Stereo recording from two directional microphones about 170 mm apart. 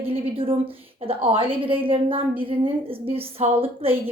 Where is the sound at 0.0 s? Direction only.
35° right (ahead or behind).